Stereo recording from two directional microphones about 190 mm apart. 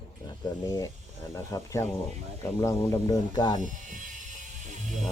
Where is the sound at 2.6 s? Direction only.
15° left (ahead or behind).